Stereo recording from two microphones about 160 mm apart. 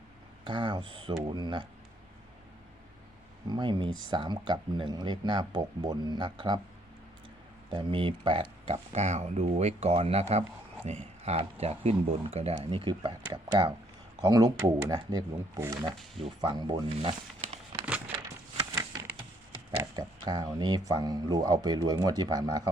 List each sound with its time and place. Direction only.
0.4 s speech: 30° right (ahead or behind)
3.4 s speech: 30° right (ahead or behind)
7.7 s speech: 30° right (ahead or behind)
12.5 s speech: 30° right (ahead or behind)
18.7 s a sound: 20° right (ahead or behind)
19.8 s speech: 25° right (ahead or behind)